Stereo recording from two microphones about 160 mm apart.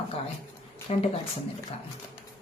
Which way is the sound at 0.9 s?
35° left (ahead or behind).